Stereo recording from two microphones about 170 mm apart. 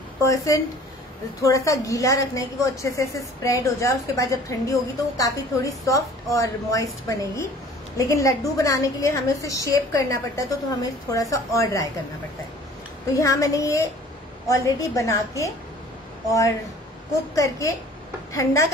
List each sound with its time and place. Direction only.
0.3 s a woman's voice: 20° left (ahead or behind)
13.1 s a woman's voice: 20° left (ahead or behind)
17.4 s a woman's voice: 20° left (ahead or behind)